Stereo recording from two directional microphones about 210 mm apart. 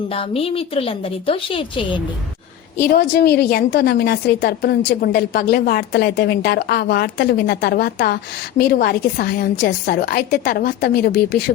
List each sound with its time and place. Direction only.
0.1 s a woman's voice: 25° left (ahead or behind)
2.9 s a woman's voice: 50° left (ahead or behind)